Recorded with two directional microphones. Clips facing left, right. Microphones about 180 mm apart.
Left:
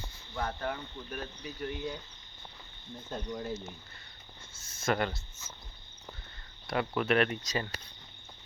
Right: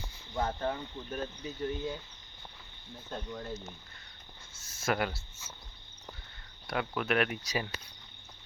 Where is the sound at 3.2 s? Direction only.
20° left (ahead or behind).